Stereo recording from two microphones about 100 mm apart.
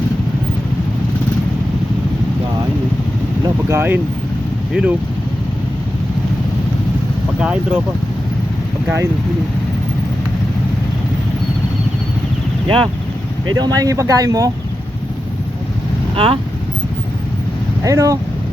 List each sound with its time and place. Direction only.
3.7 s speech: 20° right (ahead or behind)
4.7 s speech: 10° right (ahead or behind)
7.3 s speech: 10° right (ahead or behind)
12.6 s speech: 65° right (ahead or behind)
13.6 s speech: 40° right (ahead or behind)
16.1 s speech: 70° right (ahead or behind)
17.8 s speech: 35° right (ahead or behind)